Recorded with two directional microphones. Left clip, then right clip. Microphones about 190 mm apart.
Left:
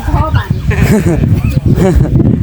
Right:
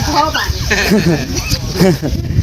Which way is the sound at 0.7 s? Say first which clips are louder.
Even; 15° left (ahead or behind).